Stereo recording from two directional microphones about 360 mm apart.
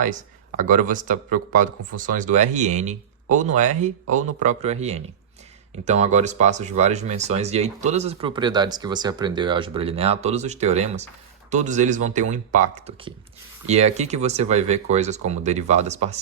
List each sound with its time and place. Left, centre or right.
0.0 s speech: right